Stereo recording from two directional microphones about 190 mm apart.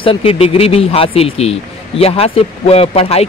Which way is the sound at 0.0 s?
30° left (ahead or behind).